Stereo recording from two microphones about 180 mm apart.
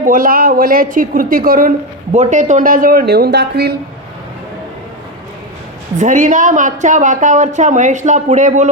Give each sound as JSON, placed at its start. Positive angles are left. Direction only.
{"t": 0.0, "sound": "a woman's voice", "side_deg": -50}
{"t": 6.0, "sound": "a woman's voice", "side_deg": -45}